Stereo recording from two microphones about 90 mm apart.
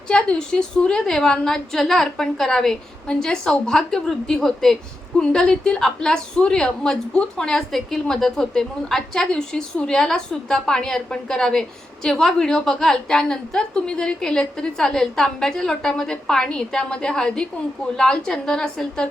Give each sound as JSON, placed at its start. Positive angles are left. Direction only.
{"t": 0.1, "sound": "a woman's voice", "side_deg": 10}